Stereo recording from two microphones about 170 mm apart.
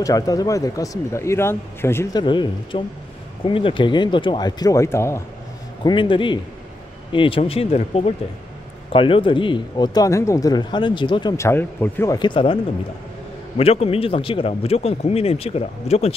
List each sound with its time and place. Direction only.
0.0 s speech: 20° left (ahead or behind)
2.2 s speech: 30° left (ahead or behind)
5.9 s speech: 30° left (ahead or behind)
11.3 s speech: 15° left (ahead or behind)
12.2 s speech: 30° left (ahead or behind)
13.6 s speech: 35° left (ahead or behind)